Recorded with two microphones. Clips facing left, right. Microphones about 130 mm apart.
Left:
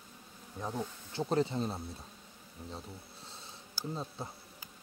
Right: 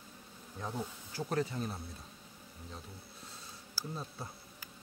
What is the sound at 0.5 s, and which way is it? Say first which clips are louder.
Bee: left 2 dB; 10° left (ahead or behind).